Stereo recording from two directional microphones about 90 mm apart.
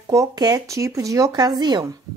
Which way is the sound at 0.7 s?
35° right (ahead or behind).